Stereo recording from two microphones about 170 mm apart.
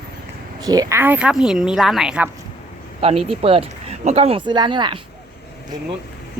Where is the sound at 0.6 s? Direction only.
20° right (ahead or behind); by 2.3 s 5° right (ahead or behind).